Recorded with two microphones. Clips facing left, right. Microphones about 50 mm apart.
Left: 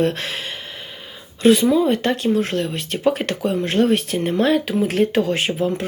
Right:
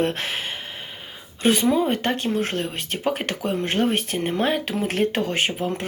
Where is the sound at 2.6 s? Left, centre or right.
Right.